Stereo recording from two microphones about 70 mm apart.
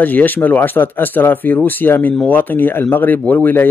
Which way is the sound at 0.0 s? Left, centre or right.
Left.